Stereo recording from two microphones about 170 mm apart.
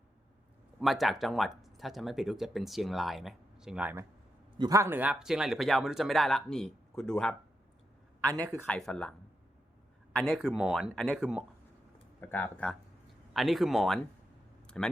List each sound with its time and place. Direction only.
0.8 s speech: centre (ahead or behind)
4.5 s speech: 25° right (ahead or behind); by 7.3 s 5° left (ahead or behind)
8.2 s speech: 20° right (ahead or behind)
8.6 s speech: 5° left (ahead or behind)
12.2 s speech: 10° left (ahead or behind)